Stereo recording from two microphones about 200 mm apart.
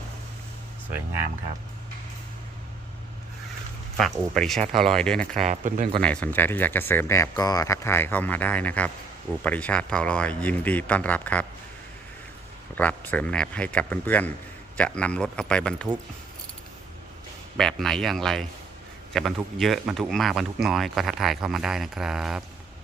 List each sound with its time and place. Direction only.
3.9 s speech: centre (ahead or behind)
5.4 s speech: 40° right (ahead or behind)
6.0 s speech: 5° left (ahead or behind)
12.7 s speech: 10° left (ahead or behind)
17.6 s speech: centre (ahead or behind)